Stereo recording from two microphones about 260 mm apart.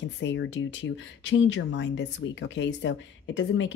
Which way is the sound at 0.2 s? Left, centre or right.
Left.